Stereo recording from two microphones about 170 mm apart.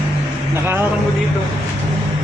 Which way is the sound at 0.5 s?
15° right (ahead or behind).